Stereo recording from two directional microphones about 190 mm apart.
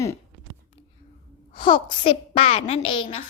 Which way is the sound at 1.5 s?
25° left (ahead or behind).